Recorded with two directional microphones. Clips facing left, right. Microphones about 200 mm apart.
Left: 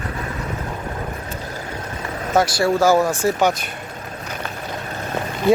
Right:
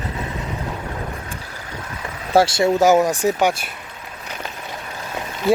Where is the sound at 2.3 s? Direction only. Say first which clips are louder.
Right 2 dB; 30° right (ahead or behind); by 3.6 s 10° right (ahead or behind).